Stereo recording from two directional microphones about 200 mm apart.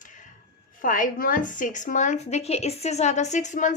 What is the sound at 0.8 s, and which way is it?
A woman's voice, 40° left (ahead or behind).